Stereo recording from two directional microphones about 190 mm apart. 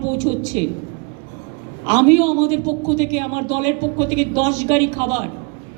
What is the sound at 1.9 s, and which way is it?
A man's voice, 35° right (ahead or behind).